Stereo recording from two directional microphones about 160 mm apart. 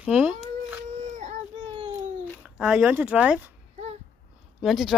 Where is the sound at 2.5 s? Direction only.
5° right (ahead or behind).